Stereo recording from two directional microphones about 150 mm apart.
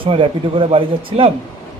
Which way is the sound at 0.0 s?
35° right (ahead or behind).